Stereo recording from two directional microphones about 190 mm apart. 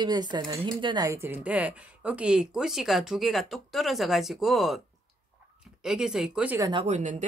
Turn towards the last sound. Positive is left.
turn(degrees=-35)  # may be behind; listen again after turning